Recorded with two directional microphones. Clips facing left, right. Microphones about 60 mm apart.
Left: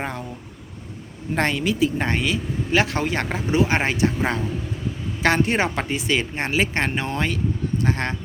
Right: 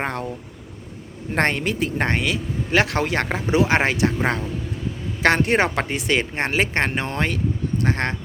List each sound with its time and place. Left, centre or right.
0.0 s speech: right
1.4 s speech: right
3.5 s speech: right
5.2 s speech: right